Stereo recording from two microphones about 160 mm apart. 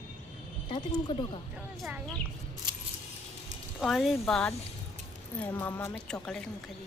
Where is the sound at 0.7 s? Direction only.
30° left (ahead or behind).